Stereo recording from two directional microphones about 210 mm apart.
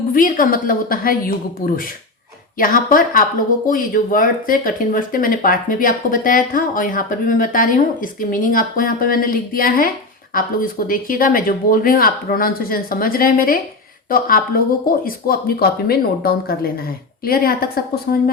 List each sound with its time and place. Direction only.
0.1 s speech: 40° left (ahead or behind)